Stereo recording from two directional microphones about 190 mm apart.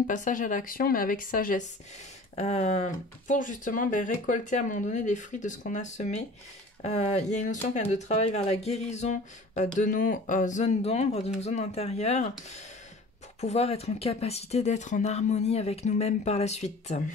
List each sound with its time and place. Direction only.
0.0 s speech: 40° left (ahead or behind)
13.4 s speech: 35° left (ahead or behind)